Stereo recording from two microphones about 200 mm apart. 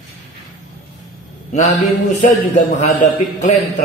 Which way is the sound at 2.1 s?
35° left (ahead or behind).